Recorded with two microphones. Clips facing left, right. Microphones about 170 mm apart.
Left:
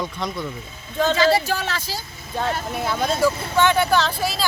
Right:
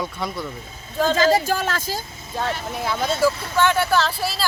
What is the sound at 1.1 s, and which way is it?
Speech, 45° right (ahead or behind).